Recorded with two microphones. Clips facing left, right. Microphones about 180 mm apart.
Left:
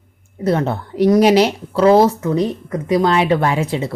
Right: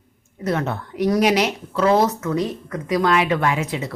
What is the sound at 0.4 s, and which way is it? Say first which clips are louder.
Speech: left 5 dB; 30° left (ahead or behind).